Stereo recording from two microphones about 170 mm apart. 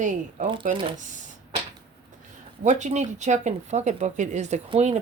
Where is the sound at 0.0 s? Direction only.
45° right (ahead or behind).